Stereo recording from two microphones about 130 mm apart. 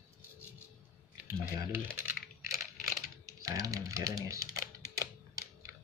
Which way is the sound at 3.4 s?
25° right (ahead or behind).